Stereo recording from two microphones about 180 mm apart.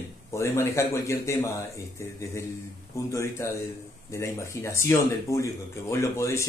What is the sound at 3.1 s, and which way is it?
Speech, 15° left (ahead or behind).